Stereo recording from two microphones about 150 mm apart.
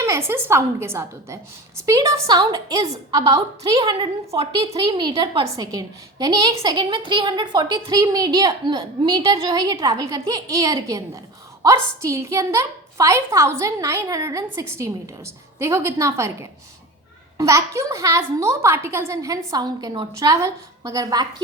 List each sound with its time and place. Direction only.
0.0 s a woman's voice: 20° right (ahead or behind); by 9.2 s 35° right (ahead or behind)
9.3 s a woman's voice: 25° right (ahead or behind)